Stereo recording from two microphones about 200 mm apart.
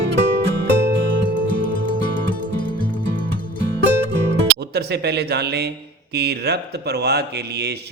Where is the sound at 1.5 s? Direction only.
45° left (ahead or behind).